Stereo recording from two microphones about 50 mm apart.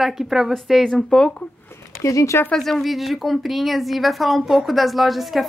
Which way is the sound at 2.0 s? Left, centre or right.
Left.